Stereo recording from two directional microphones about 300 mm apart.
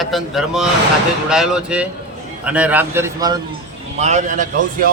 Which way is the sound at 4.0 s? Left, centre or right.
Right.